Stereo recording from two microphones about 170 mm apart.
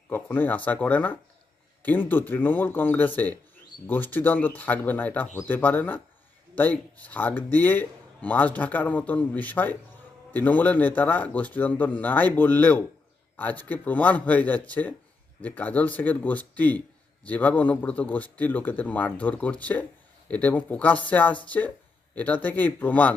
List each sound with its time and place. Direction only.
0.1 s speech: 10° left (ahead or behind)